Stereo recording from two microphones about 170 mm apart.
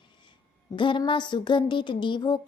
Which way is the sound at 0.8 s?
30° left (ahead or behind).